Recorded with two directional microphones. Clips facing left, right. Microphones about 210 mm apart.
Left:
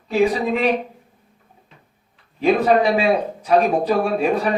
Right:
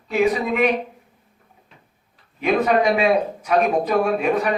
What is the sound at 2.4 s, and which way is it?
Speech, 30° left (ahead or behind).